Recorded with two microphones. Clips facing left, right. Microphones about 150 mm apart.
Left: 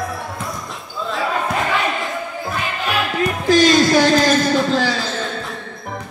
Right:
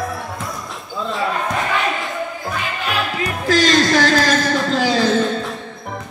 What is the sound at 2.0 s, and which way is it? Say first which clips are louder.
Basketball bounce: even; centre (ahead or behind).